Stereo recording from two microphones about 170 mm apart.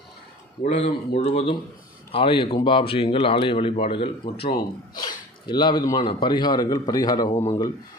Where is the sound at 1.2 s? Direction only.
40° left (ahead or behind); by 7.3 s 20° left (ahead or behind).